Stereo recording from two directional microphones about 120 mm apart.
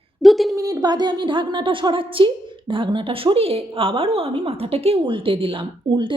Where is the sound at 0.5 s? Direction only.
30° right (ahead or behind).